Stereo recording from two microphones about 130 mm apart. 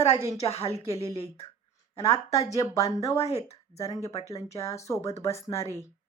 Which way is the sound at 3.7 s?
25° left (ahead or behind).